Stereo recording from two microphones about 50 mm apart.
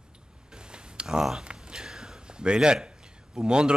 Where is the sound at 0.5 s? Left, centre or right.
Centre.